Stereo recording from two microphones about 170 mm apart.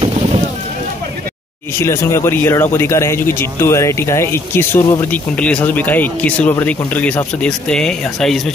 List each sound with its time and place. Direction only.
1.8 s speech: 15° left (ahead or behind)